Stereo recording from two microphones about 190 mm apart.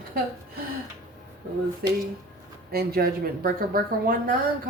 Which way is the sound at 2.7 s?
55° right (ahead or behind).